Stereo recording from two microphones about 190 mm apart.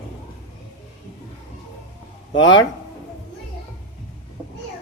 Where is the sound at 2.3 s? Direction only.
75° left (ahead or behind).